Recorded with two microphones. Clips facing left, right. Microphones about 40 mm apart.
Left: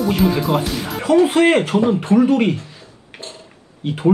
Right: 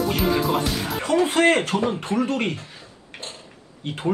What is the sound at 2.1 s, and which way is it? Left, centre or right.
Speech, centre.